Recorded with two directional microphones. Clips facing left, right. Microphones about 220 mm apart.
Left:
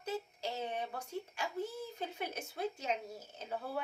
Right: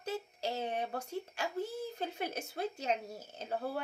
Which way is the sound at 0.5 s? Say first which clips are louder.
Right 3 dB; 35° right (ahead or behind).